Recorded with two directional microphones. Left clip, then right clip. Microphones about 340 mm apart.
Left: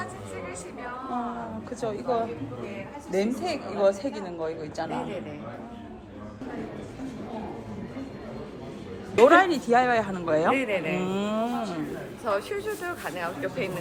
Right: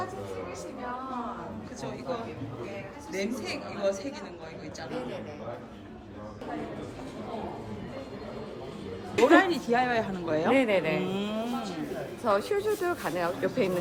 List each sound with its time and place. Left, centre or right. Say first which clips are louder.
1.8 s a woman's voice: left 8 dB; centre
9.2 s a woman's voice: left 4 dB; centre
10.5 s speech: right 1 dB; right
11.0 s a woman's voice: left 4 dB; centre
12.2 s speech: right 2 dB; right